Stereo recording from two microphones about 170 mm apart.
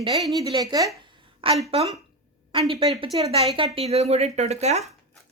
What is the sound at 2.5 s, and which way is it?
A woman's voice, 35° right (ahead or behind).